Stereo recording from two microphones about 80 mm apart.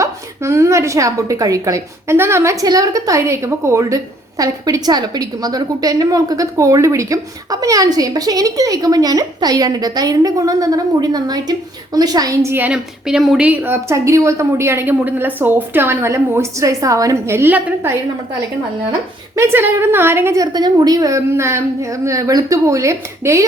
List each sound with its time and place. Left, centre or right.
0.0 s a woman's voice: right
2.1 s a woman's voice: right
2.6 s a woman's voice: right
12.7 s a woman's voice: centre
13.5 s a woman's voice: right
17.3 s a woman's voice: right
19.4 s a woman's voice: right
20.4 s a woman's voice: right